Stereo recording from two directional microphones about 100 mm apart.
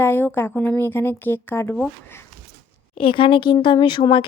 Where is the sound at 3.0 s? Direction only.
60° left (ahead or behind).